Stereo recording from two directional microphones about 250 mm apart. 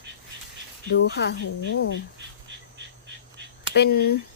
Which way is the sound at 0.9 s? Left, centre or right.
Left.